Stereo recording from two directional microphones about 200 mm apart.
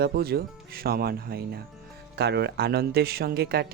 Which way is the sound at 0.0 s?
50° right (ahead or behind).